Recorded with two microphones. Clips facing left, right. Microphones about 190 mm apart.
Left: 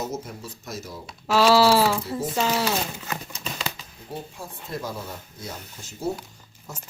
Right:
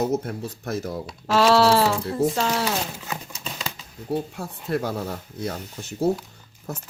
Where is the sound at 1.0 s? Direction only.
Centre (ahead or behind).